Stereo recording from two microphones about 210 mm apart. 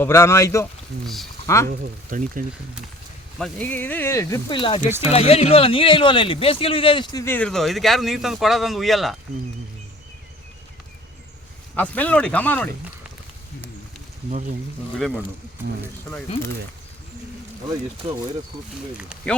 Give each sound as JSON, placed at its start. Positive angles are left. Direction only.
{"t": 0.0, "sound": "speech", "side_deg": 15}
{"t": 1.0, "sound": "speech", "side_deg": 0}
{"t": 1.6, "sound": "speech", "side_deg": -40}
{"t": 3.3, "sound": "speech", "side_deg": 5}
{"t": 11.8, "sound": "speech", "side_deg": 5}
{"t": 18.9, "sound": "speech", "side_deg": 0}